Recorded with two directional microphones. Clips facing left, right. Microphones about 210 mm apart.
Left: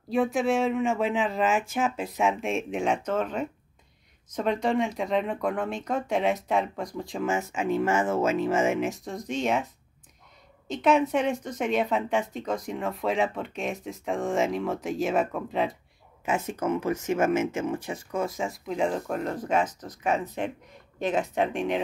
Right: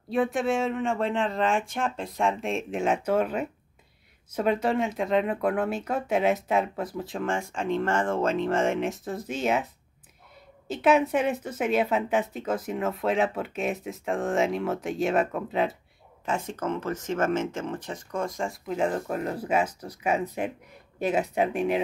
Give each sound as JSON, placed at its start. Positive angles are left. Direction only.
{"t": 0.1, "sound": "speech", "side_deg": 0}
{"t": 10.7, "sound": "speech", "side_deg": -5}